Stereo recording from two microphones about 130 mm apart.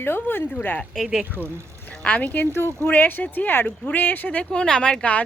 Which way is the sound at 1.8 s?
10° left (ahead or behind).